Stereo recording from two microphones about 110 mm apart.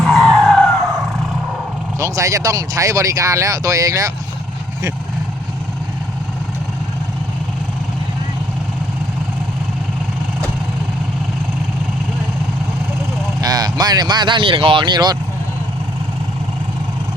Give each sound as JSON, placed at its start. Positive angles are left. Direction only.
{"t": 0.0, "sound": "vehicle", "side_deg": 0}
{"t": 2.0, "sound": "speech", "side_deg": -30}
{"t": 13.4, "sound": "speech", "side_deg": -35}